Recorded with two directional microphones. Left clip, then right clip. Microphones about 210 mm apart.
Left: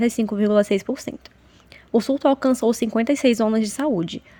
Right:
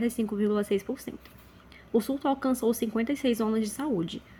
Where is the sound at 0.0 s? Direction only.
30° left (ahead or behind).